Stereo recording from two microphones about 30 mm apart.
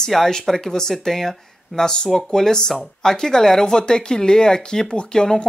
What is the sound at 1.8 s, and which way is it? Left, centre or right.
Speech, left.